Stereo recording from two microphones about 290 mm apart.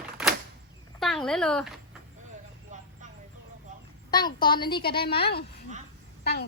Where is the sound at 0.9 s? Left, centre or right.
Centre.